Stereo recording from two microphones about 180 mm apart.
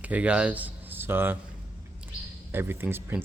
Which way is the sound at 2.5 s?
10° right (ahead or behind).